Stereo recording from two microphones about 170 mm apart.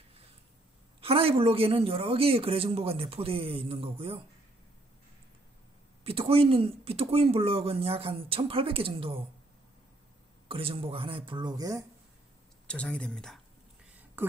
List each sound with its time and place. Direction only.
1.0 s speech: 35° right (ahead or behind)
6.0 s speech: 35° right (ahead or behind)
10.5 s speech: 35° right (ahead or behind)
12.6 s speech: 5° left (ahead or behind)